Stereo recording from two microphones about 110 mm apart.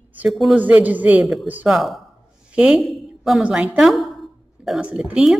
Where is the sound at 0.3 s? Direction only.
Centre (ahead or behind).